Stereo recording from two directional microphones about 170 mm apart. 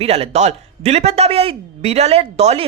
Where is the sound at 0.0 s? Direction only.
35° right (ahead or behind).